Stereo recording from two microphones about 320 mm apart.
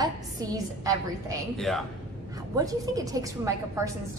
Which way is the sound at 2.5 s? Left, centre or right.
Centre.